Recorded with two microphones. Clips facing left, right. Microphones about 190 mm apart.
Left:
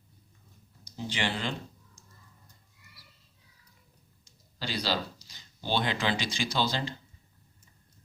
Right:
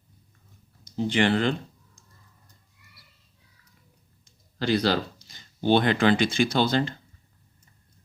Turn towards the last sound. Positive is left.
turn(degrees=-55)  # may be behind; listen again after turning